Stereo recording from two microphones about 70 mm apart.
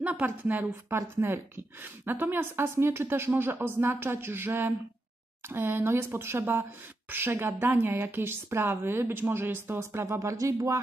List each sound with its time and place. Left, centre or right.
0.0 s a woman's voice: right